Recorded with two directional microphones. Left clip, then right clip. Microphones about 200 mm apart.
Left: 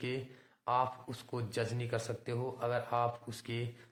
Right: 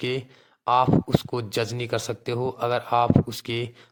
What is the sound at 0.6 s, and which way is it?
Speech, 45° right (ahead or behind).